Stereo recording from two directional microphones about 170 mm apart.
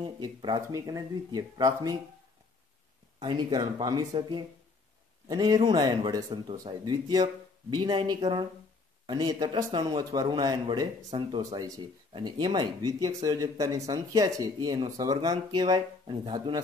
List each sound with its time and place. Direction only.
0.0 s speech: 25° right (ahead or behind)
3.2 s speech: 25° right (ahead or behind)
5.3 s speech: 25° right (ahead or behind)